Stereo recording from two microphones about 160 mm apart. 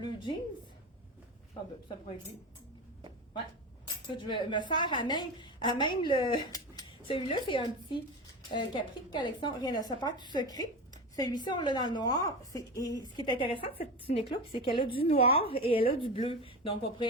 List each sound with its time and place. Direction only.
4.1 s a woman's voice: 30° left (ahead or behind)